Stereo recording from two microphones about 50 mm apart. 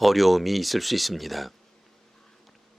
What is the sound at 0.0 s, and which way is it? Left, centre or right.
Speech, centre.